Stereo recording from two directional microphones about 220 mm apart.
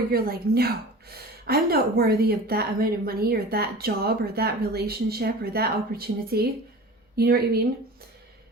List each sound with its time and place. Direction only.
0.1 s a woman's voice: 45° right (ahead or behind)